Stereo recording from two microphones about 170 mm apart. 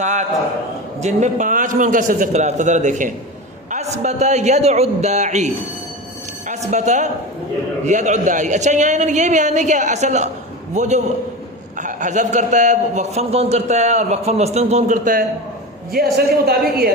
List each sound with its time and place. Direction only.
0.0 s a man's voice: 45° right (ahead or behind)
6.5 s a man's voice: 45° right (ahead or behind)
15.9 s speech: 65° right (ahead or behind)